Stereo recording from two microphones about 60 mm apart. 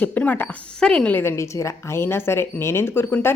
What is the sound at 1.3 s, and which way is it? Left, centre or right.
Speech, left.